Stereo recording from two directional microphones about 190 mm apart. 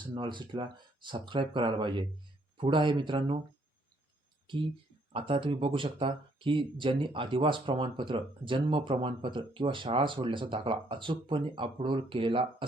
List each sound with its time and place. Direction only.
0.0 s speech: 25° right (ahead or behind)
5.1 s speech: 30° right (ahead or behind)